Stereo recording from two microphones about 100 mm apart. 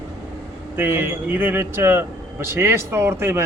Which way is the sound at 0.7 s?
20° right (ahead or behind).